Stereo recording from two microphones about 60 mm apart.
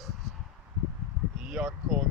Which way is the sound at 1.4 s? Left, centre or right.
Centre.